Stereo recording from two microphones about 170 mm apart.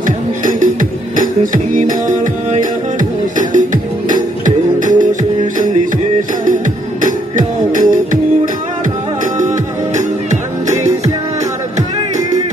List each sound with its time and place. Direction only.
0.0 s music: 50° right (ahead or behind)
6.4 s music: 50° right (ahead or behind)
10.7 s music: 15° right (ahead or behind)